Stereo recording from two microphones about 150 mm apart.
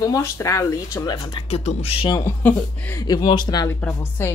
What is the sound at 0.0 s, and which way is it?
Speech, 20° left (ahead or behind).